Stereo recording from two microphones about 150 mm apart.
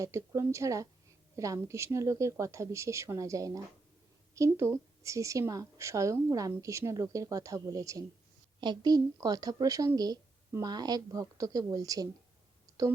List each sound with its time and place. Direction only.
0.0 s a woman's voice: 20° right (ahead or behind)